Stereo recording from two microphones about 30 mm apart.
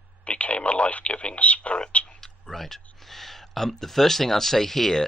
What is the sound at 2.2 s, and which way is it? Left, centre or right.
Speech, centre.